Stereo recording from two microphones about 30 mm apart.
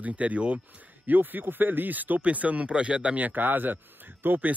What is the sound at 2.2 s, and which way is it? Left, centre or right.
Speech, right.